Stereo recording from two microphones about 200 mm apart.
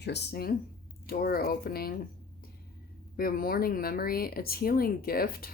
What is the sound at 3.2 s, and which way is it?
Speech, 50° left (ahead or behind).